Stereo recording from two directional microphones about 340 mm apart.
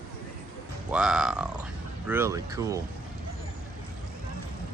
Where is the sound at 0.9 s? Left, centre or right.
Centre.